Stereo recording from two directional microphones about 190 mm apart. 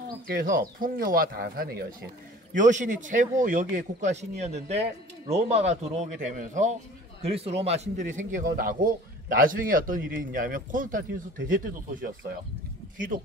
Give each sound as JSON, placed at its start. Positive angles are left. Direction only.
{"t": 0.3, "sound": "a man's voice", "side_deg": -50}